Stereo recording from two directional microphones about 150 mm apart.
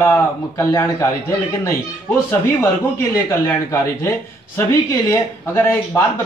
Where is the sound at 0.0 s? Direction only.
20° left (ahead or behind).